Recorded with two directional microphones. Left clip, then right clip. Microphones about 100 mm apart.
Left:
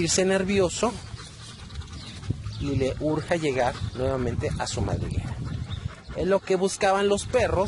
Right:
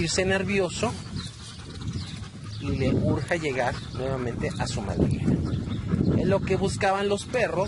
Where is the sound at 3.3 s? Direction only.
40° left (ahead or behind).